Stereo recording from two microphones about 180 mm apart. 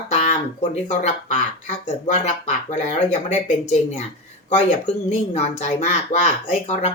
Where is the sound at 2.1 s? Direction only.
40° left (ahead or behind).